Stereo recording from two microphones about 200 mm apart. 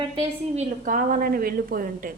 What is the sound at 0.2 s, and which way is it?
A woman's voice, 40° right (ahead or behind).